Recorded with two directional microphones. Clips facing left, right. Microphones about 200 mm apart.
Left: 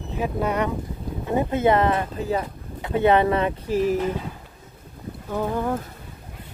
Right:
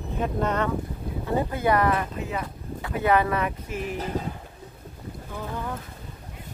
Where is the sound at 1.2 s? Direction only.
20° left (ahead or behind).